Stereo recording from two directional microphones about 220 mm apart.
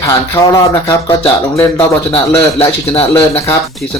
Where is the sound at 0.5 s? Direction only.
10° left (ahead or behind).